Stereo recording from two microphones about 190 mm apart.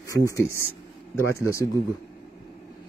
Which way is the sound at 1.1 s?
15° left (ahead or behind).